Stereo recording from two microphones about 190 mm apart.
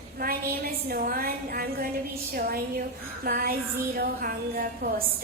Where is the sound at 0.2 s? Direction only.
50° right (ahead or behind).